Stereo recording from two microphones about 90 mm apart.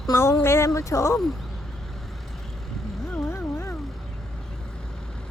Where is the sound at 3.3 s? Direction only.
30° left (ahead or behind).